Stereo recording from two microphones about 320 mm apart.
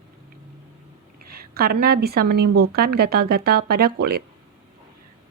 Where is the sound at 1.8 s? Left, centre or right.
Right.